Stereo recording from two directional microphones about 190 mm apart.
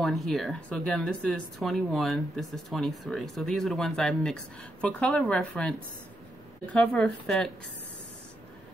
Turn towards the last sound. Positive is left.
turn(degrees=0)  # may be behind; listen again after turning